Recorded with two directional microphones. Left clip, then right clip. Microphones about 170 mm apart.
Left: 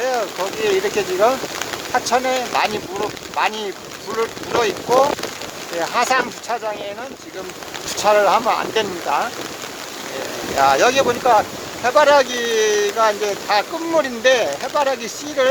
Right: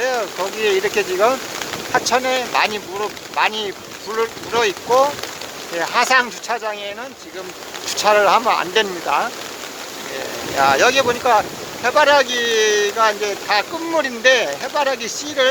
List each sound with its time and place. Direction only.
0.0 s speech: centre (ahead or behind)
5.8 s speech: centre (ahead or behind)
7.9 s speech: centre (ahead or behind)
10.6 s speech: centre (ahead or behind)